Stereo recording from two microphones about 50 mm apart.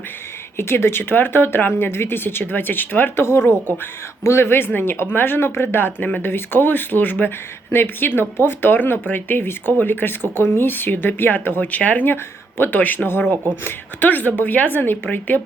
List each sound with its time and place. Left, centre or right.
0.5 s speech: left
4.2 s a woman's voice: left
12.1 s a woman's voice: left